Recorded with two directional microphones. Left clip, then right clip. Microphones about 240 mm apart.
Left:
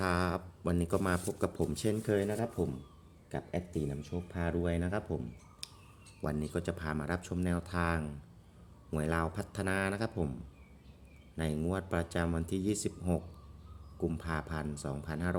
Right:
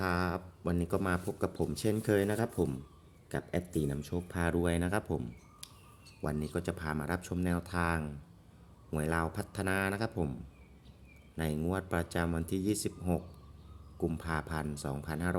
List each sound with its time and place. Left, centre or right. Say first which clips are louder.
0.0 s speech: left 1 dB; centre
6.2 s speech: even; centre
11.3 s speech: right 1 dB; centre